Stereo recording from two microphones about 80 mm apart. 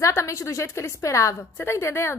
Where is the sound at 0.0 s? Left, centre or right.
Left.